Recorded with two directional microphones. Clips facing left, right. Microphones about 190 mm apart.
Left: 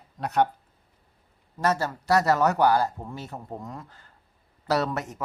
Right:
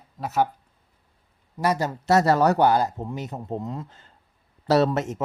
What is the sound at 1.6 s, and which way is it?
Speech, 15° right (ahead or behind).